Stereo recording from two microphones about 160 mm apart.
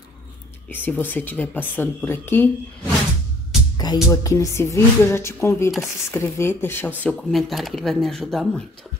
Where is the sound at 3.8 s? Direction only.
25° left (ahead or behind); by 8.6 s centre (ahead or behind).